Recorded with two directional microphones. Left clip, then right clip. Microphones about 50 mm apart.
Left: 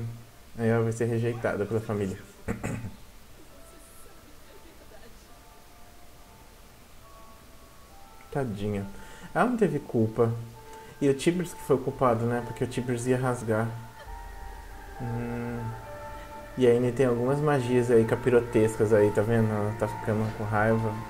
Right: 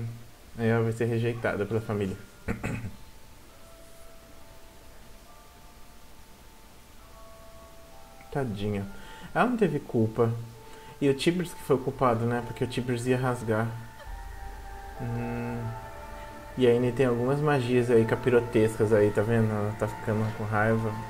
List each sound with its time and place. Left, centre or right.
0.6 s a man's voice: centre
8.3 s speech: centre
15.1 s a man's voice: centre
16.5 s speech: centre